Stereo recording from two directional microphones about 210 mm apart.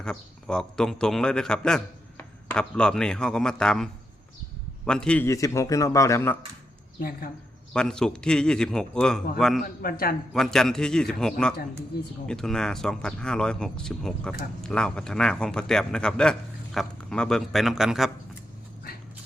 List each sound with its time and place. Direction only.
0.0 s speech: 5° left (ahead or behind)
4.9 s a man's voice: 5° left (ahead or behind)
7.7 s speech: 5° left (ahead or behind)
9.6 s speech: 45° left (ahead or behind)
10.3 s speech: centre (ahead or behind)